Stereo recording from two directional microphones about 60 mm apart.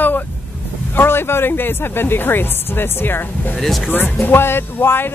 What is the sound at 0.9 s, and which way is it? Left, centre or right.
Speech, left.